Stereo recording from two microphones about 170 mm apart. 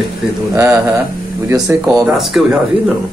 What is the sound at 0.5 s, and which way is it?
Speech, 15° right (ahead or behind).